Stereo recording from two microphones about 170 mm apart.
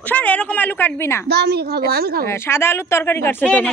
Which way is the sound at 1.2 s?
70° right (ahead or behind).